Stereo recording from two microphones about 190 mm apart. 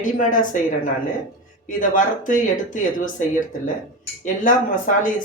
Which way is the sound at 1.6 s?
45° left (ahead or behind).